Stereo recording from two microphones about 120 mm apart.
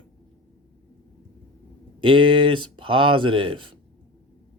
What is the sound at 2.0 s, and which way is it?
Speech, 45° right (ahead or behind).